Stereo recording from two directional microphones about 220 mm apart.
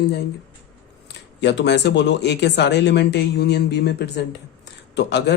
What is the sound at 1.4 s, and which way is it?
Speech, 50° left (ahead or behind).